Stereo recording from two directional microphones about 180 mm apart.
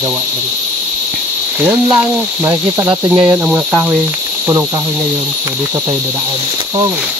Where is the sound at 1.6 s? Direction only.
10° right (ahead or behind).